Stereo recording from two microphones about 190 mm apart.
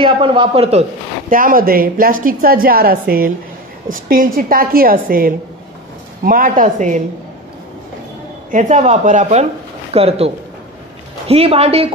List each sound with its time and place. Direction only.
0.0 s speech: 25° right (ahead or behind)
1.3 s a woman's voice: 45° right (ahead or behind)
8.5 s speech: 40° right (ahead or behind)